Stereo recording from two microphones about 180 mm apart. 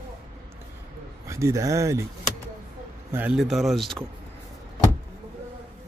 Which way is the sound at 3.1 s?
5° right (ahead or behind).